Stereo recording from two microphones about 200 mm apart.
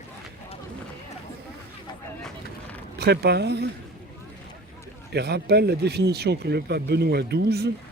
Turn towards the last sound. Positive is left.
turn(degrees=-55)  # may be behind; listen again after turning